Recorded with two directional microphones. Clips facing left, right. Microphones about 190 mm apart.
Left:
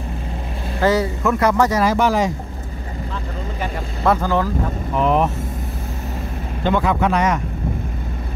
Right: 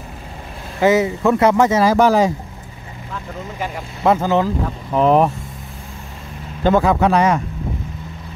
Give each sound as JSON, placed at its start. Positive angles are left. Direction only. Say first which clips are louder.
{"t": 0.7, "sound": "speech", "louder": "right 3 dB", "side_deg": -20}
{"t": 1.9, "sound": "speech", "louder": "right 4 dB", "side_deg": -35}
{"t": 3.6, "sound": "speech", "louder": "right 2 dB", "side_deg": -20}
{"t": 5.0, "sound": "speech", "louder": "right 4 dB", "side_deg": -40}
{"t": 6.6, "sound": "speech", "louder": "right 4 dB", "side_deg": -40}